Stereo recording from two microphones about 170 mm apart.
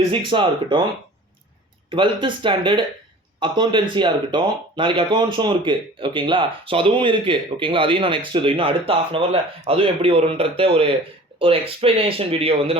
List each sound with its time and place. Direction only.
0.1 s speech: 30° right (ahead or behind)
1.9 s a man's voice: 30° right (ahead or behind)